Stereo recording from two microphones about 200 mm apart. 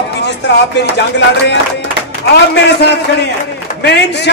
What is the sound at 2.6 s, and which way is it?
A man's voice, 60° left (ahead or behind).